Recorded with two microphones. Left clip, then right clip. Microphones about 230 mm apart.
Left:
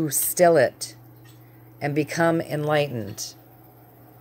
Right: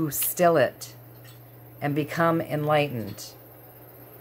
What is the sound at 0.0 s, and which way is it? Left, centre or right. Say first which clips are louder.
Speech: left 3 dB; left.